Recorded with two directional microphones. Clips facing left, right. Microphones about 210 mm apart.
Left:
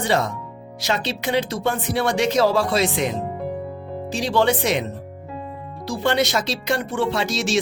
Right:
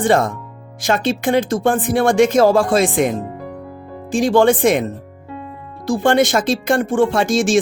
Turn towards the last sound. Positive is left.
turn(degrees=-50)  # may be behind; listen again after turning